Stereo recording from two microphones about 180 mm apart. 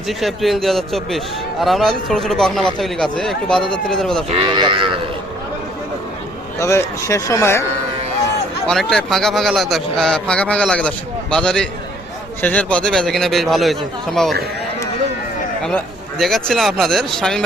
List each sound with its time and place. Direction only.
0.1 s a man's voice: centre (ahead or behind)
4.3 s speech: 25° right (ahead or behind)
6.6 s speech: 15° left (ahead or behind)
8.6 s a man's voice: centre (ahead or behind)
15.6 s a man's voice: 5° left (ahead or behind)